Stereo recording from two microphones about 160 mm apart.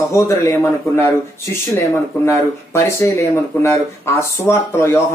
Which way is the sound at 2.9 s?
15° left (ahead or behind).